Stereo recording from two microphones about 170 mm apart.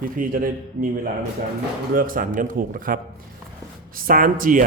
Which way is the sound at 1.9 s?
55° right (ahead or behind).